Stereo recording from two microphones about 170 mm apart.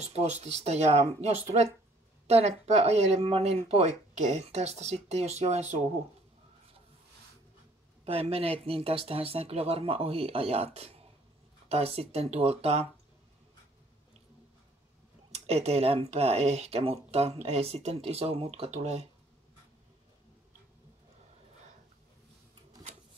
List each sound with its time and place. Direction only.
0.0 s speech: 40° right (ahead or behind)
8.0 s speech: 35° right (ahead or behind)
15.3 s speech: 40° right (ahead or behind)